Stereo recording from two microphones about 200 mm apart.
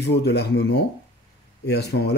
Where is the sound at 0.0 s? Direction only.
55° left (ahead or behind).